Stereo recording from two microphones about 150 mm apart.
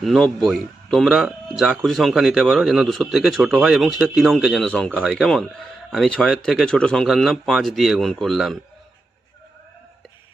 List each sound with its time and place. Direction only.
0.0 s a man's voice: centre (ahead or behind)